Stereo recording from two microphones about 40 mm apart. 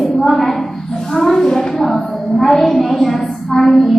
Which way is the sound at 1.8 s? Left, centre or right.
Centre.